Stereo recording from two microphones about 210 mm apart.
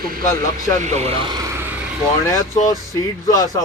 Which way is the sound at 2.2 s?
15° left (ahead or behind).